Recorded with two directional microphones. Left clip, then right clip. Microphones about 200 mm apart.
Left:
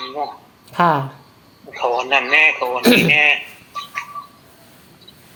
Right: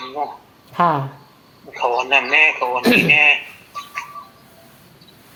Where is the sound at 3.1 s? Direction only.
5° left (ahead or behind).